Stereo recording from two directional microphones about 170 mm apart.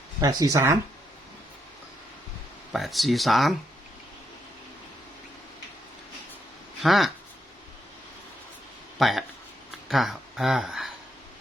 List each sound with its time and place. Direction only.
0.2 s speech: 20° right (ahead or behind)
2.7 s speech: centre (ahead or behind)
6.8 s speech: centre (ahead or behind)
9.0 s speech: centre (ahead or behind)